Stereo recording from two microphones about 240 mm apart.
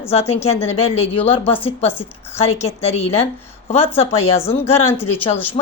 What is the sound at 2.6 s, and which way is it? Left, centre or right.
A woman's voice, left.